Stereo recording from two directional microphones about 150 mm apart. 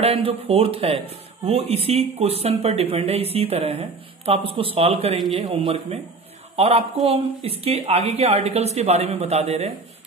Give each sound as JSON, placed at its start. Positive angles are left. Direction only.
{"t": 0.0, "sound": "a woman's voice", "side_deg": -40}